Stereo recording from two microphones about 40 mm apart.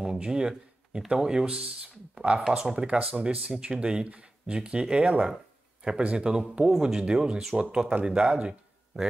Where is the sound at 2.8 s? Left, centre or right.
Right.